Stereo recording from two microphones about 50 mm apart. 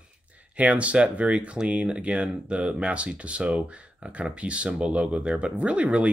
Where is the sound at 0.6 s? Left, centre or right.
Right.